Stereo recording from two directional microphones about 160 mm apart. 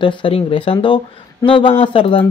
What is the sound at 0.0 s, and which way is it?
Speech, 30° left (ahead or behind).